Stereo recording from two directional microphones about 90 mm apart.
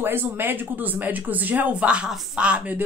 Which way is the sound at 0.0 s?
25° right (ahead or behind).